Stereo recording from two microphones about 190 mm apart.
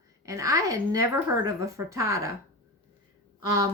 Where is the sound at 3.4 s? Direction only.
20° right (ahead or behind).